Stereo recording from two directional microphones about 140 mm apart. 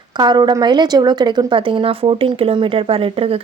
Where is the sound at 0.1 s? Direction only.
30° right (ahead or behind).